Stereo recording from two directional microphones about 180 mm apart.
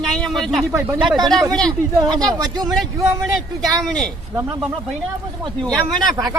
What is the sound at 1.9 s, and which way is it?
Speech, 20° right (ahead or behind).